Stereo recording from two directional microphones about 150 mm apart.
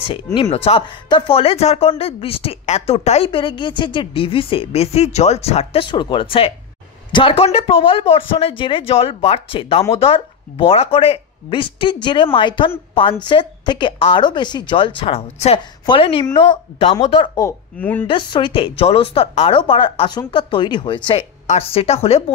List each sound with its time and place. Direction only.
0.0 s speech: 35° left (ahead or behind)
17.7 s a woman's voice: 10° left (ahead or behind)
18.0 s speech: 35° left (ahead or behind)